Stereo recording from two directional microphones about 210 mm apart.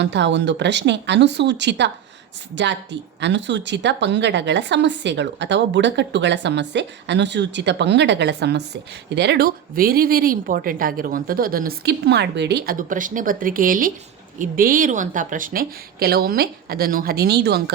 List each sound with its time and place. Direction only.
0.0 s a woman's voice: 55° right (ahead or behind)